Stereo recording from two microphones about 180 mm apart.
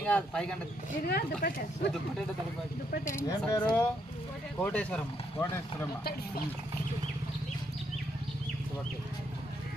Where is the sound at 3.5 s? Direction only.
20° left (ahead or behind).